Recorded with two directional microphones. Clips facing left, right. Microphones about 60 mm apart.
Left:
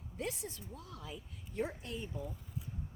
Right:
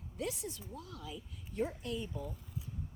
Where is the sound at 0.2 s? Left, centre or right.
Left.